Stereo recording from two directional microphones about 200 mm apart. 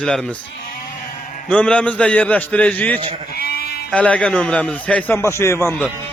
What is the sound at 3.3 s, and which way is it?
Sheep, 50° left (ahead or behind).